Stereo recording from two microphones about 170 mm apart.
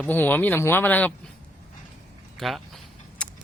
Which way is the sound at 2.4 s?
Centre (ahead or behind).